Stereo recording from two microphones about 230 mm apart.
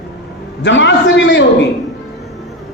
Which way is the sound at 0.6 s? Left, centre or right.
Left.